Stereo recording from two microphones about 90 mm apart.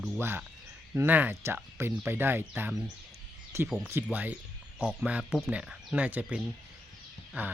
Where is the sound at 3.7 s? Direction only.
20° right (ahead or behind).